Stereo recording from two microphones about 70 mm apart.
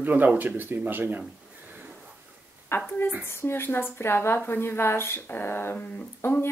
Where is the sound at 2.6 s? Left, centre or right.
Left.